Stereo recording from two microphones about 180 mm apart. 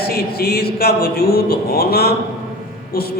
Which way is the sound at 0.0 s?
60° left (ahead or behind).